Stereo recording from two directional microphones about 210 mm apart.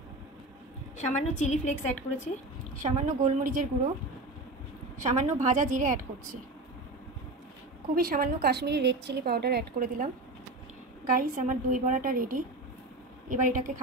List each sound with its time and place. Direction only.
0.9 s a woman's voice: 35° left (ahead or behind)
2.7 s a woman's voice: 35° right (ahead or behind)
4.9 s a woman's voice: 35° right (ahead or behind)
7.9 s a woman's voice: 45° right (ahead or behind)
11.1 s a woman's voice: 40° right (ahead or behind)